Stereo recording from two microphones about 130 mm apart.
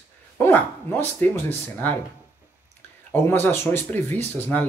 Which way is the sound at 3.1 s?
15° left (ahead or behind).